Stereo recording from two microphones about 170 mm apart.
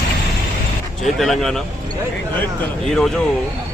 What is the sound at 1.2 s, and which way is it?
Speech, centre (ahead or behind).